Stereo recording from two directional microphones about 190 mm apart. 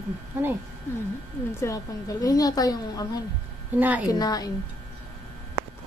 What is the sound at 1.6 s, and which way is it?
A woman's voice, 15° left (ahead or behind).